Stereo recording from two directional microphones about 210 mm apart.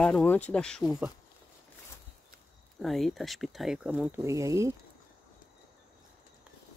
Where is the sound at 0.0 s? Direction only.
5° left (ahead or behind).